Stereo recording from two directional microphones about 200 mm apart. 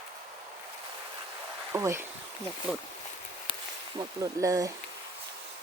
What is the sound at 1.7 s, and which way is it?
Speech, 15° right (ahead or behind).